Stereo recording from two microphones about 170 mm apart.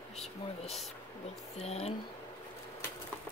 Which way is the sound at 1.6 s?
40° left (ahead or behind).